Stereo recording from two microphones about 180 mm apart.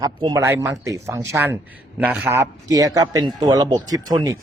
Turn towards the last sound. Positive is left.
turn(degrees=-20)  # may be behind; listen again after turning